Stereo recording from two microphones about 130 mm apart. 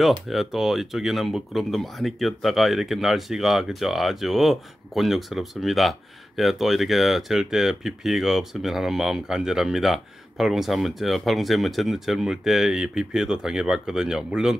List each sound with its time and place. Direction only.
0.3 s speech: centre (ahead or behind)